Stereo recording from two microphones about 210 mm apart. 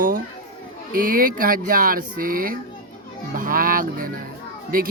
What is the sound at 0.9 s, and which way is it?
Speech, 40° right (ahead or behind).